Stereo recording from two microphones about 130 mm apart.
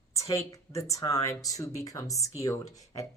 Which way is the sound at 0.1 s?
25° left (ahead or behind).